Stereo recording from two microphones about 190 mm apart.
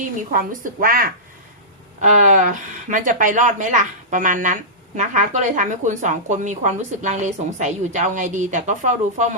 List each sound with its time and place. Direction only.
0.3 s speech: 45° right (ahead or behind)